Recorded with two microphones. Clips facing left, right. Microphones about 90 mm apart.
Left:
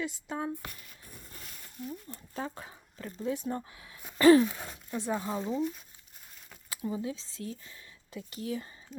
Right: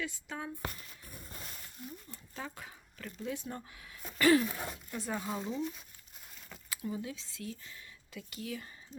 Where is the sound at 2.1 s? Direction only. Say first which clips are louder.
Left 6 dB; 35° left (ahead or behind).